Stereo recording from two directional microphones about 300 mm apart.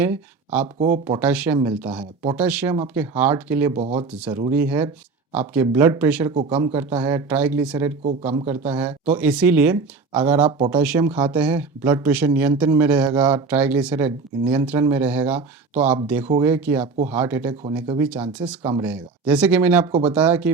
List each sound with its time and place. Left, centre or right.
0.0 s speech: centre
0.8 s speech: centre
1.2 s speech: centre
3.8 s speech: right
4.1 s speech: centre